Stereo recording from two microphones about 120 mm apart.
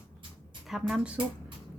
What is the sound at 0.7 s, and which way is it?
Speech, 5° right (ahead or behind).